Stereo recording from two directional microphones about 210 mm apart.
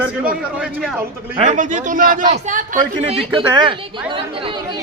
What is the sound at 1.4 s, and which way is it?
A man's voice, 35° right (ahead or behind).